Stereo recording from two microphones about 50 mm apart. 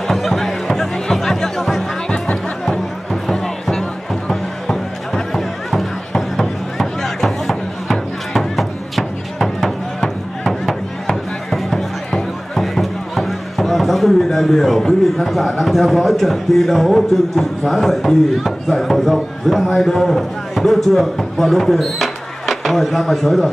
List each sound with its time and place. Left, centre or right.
0.1 s music: centre
2.0 s music: centre
2.6 s music: centre
12.5 s speech: centre